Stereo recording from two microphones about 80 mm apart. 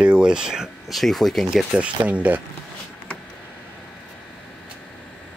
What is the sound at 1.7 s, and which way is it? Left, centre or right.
Speech, centre.